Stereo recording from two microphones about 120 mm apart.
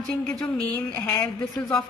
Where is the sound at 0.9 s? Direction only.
30° left (ahead or behind).